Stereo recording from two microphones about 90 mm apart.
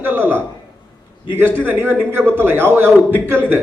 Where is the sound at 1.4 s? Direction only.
20° right (ahead or behind).